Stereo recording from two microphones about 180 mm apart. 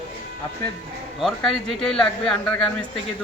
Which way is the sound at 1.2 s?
Centre (ahead or behind).